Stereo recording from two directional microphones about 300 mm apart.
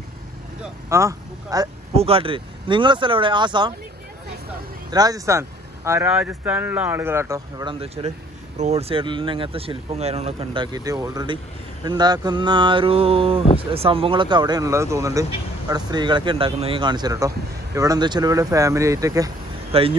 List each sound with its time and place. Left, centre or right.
0.6 s speech: centre
4.9 s speech: centre